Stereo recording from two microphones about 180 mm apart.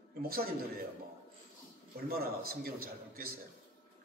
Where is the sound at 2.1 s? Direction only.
55° right (ahead or behind).